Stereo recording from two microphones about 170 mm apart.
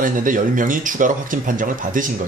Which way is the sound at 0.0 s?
50° right (ahead or behind).